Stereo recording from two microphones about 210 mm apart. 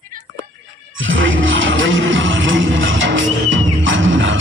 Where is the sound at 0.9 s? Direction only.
65° right (ahead or behind).